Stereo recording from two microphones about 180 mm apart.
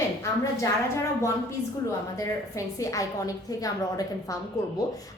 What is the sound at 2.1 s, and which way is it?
A woman's voice, 20° left (ahead or behind).